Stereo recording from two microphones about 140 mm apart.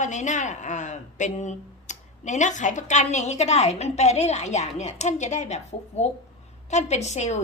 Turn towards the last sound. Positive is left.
turn(degrees=55)  # may be behind; listen again after turning